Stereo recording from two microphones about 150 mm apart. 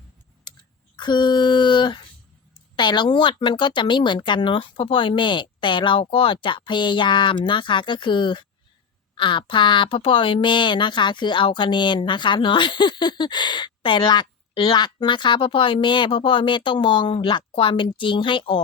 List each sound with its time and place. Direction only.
0.5 s typing: 30° left (ahead or behind)
0.9 s a sound: 30° left (ahead or behind)
2.7 s speech: 30° left (ahead or behind)